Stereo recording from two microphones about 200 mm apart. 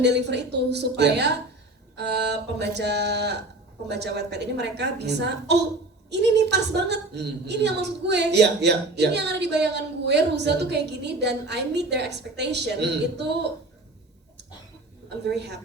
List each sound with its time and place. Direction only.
0.0 s a woman's voice: 60° right (ahead or behind)
15.3 s a woman's voice: 55° right (ahead or behind)